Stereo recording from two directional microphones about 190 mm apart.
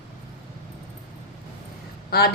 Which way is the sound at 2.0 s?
55° left (ahead or behind).